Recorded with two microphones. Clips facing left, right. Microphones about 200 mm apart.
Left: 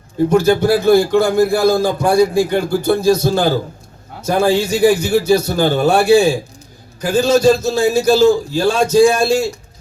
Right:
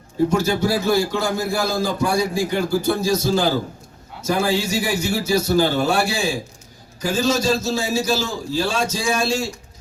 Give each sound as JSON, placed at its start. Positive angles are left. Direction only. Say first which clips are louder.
{"t": 0.3, "sound": "a man's voice", "louder": "left 11 dB", "side_deg": 55}